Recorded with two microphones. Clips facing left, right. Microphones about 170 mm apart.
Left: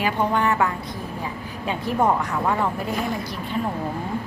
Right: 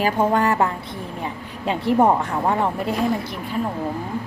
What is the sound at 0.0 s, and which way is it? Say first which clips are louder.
Speech: right 3 dB; 40° right (ahead or behind).